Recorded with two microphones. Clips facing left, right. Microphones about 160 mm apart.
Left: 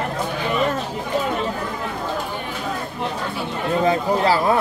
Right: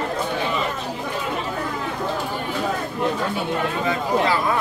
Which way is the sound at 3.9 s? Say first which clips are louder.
Left 3 dB; 35° left (ahead or behind).